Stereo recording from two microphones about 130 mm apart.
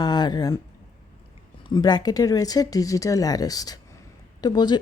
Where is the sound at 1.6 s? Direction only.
30° left (ahead or behind).